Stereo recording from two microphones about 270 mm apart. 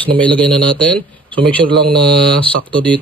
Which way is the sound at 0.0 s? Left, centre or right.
Centre.